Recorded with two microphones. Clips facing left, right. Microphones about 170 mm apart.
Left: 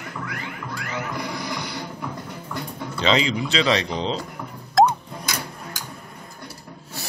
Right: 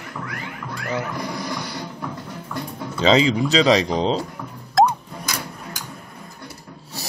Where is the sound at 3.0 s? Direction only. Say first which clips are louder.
Right 5 dB; 35° right (ahead or behind).